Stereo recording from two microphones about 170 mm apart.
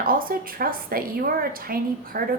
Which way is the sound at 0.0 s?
60° right (ahead or behind).